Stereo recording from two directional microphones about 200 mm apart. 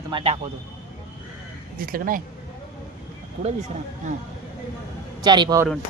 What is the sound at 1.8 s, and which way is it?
Speech, 45° right (ahead or behind).